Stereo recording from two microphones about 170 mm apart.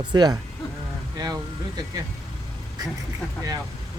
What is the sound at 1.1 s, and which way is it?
Vehicle, 20° right (ahead or behind).